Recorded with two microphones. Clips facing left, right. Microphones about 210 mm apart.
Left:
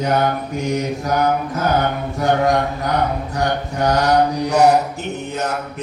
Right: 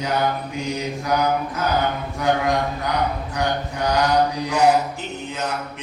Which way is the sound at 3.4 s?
45° left (ahead or behind).